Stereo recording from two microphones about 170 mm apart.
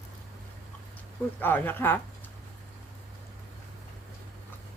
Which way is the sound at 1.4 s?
10° left (ahead or behind).